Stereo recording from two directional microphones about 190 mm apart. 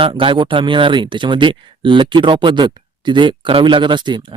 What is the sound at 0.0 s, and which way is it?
Speech, 25° right (ahead or behind).